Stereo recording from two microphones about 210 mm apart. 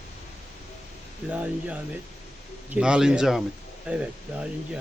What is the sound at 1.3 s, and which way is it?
Speech, 5° right (ahead or behind).